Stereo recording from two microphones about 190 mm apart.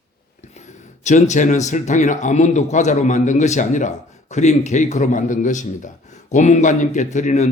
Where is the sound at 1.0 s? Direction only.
40° left (ahead or behind).